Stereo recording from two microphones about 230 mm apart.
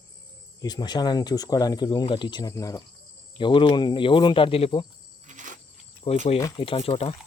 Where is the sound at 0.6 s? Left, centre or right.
Centre.